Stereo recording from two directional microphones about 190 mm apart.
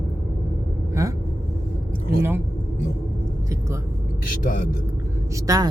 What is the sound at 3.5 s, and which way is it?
Vehicle, 15° right (ahead or behind).